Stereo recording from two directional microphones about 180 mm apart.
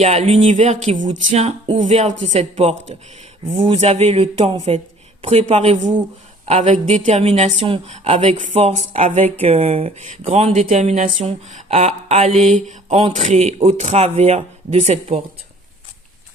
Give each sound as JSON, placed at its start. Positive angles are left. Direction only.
{"t": 0.0, "sound": "speech", "side_deg": -35}